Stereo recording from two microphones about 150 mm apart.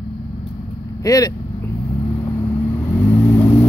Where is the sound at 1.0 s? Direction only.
25° left (ahead or behind).